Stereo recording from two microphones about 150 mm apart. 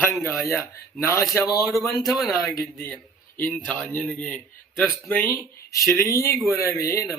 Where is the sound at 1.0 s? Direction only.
20° left (ahead or behind).